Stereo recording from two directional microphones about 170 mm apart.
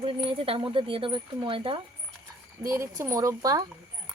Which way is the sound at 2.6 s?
15° right (ahead or behind).